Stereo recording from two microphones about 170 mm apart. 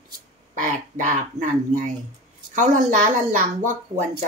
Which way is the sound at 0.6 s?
45° right (ahead or behind).